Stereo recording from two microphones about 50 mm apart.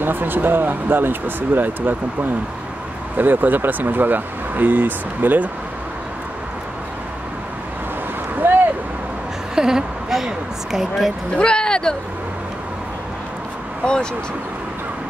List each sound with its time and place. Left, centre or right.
0.0 s speech: right
8.4 s a sound: right
9.6 s a woman's voice: centre
11.3 s speech: centre